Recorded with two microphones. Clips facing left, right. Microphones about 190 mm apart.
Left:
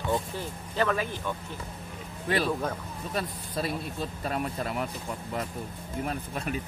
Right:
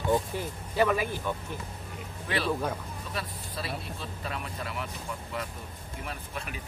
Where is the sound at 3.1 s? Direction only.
45° left (ahead or behind).